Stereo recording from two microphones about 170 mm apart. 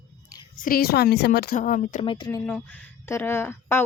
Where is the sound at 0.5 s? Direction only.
55° left (ahead or behind).